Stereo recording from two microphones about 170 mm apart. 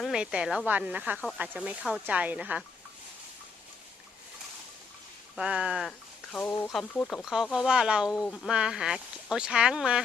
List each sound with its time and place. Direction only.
0.0 s speech: 5° right (ahead or behind)
5.4 s speech: 5° right (ahead or behind)